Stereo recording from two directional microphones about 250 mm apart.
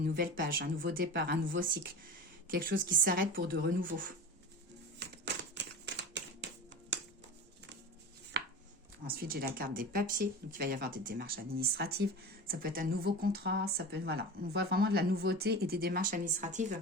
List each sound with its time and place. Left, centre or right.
0.1 s speech: right
4.9 s typewriter: right
9.0 s speech: right